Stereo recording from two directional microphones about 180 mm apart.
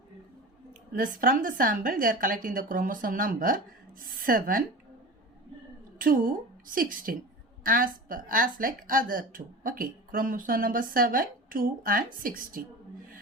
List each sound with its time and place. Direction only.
0.9 s a woman's voice: 50° right (ahead or behind)
6.0 s a woman's voice: 50° right (ahead or behind)